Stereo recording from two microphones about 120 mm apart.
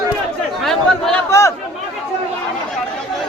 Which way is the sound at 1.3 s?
25° left (ahead or behind).